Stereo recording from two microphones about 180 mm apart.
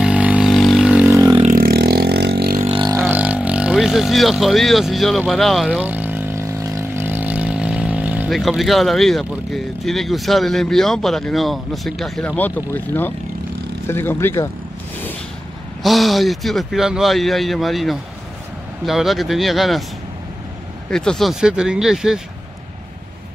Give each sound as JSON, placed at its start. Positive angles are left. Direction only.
{"t": 0.0, "sound": "vehicle", "side_deg": -5}
{"t": 1.1, "sound": "vehicle", "side_deg": -20}
{"t": 1.5, "sound": "vehicle", "side_deg": -60}
{"t": 2.6, "sound": "vehicle", "side_deg": -25}
{"t": 3.0, "sound": "speech", "side_deg": -10}
{"t": 15.8, "sound": "speech", "side_deg": 0}
{"t": 20.9, "sound": "speech", "side_deg": 5}